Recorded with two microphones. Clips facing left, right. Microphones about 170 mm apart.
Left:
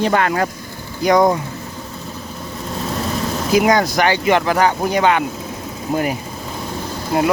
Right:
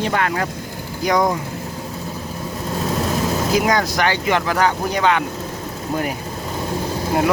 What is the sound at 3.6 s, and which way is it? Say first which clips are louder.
Speech: left 3 dB; 15° left (ahead or behind).